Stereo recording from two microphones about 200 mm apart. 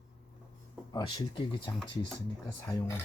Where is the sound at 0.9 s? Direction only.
20° left (ahead or behind).